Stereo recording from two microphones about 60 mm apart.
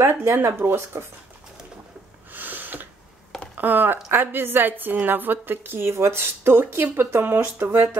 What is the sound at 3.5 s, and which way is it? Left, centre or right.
A woman's voice, right.